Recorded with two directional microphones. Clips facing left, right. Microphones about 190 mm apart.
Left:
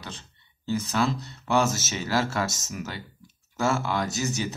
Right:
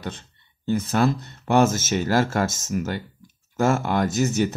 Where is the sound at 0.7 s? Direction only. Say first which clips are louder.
Right 5 dB; 55° right (ahead or behind).